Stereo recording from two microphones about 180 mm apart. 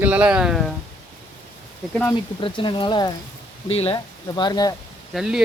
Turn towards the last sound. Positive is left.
turn(degrees=0)  # may be behind; listen again after turning